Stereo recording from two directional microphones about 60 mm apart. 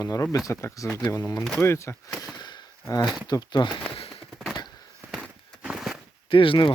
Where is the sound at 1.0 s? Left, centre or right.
Left.